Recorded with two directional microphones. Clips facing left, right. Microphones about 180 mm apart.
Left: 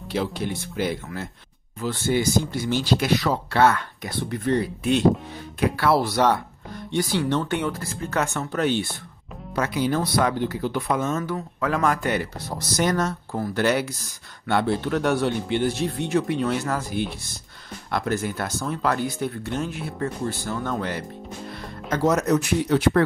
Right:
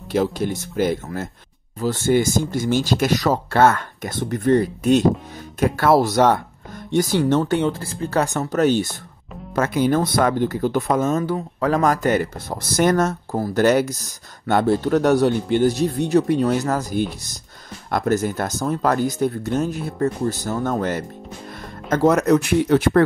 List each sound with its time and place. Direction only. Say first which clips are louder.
0.1 s speech: right 6 dB; 45° right (ahead or behind)